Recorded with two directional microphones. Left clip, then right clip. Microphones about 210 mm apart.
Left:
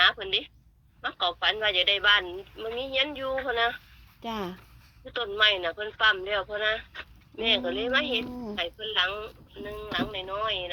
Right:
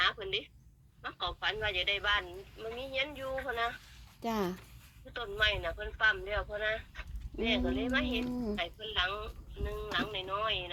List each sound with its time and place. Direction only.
0.0 s a woman's voice: 50° left (ahead or behind)
4.2 s speech: 25° right (ahead or behind)
5.0 s speech: 50° left (ahead or behind)